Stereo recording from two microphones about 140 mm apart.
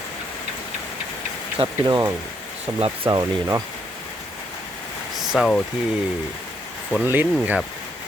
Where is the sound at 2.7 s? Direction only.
40° right (ahead or behind).